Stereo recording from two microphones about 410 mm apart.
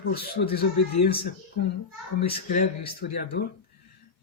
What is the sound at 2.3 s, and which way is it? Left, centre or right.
Speech, left.